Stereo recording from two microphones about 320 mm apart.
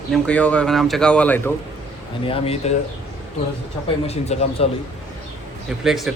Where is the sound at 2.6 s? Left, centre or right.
Left.